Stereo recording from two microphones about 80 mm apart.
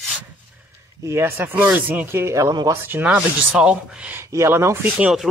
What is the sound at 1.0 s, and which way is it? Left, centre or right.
Speech, right.